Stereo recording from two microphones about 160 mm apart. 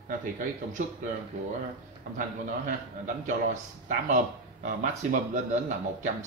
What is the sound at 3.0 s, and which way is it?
Speech, 50° right (ahead or behind).